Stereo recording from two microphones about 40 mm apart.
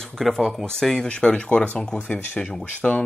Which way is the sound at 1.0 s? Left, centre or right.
Left.